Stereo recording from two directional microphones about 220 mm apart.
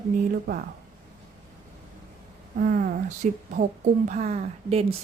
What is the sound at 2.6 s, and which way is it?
A woman's voice, 35° right (ahead or behind).